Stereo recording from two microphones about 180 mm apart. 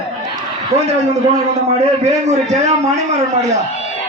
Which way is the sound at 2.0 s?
40° right (ahead or behind).